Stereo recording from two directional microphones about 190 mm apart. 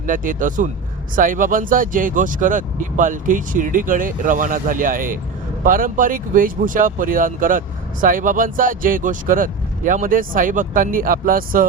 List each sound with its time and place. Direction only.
0.0 s speech: 45° right (ahead or behind)